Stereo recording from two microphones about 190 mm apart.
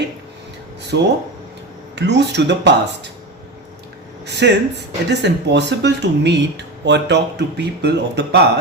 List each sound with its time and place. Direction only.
0.9 s speech: 65° right (ahead or behind)
4.3 s speech: 65° right (ahead or behind)